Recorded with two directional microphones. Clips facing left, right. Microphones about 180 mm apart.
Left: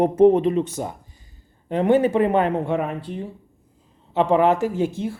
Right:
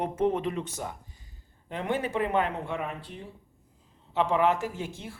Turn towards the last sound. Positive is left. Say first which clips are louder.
# left 12 dB
turn(degrees=30)  # may be behind; listen again after turning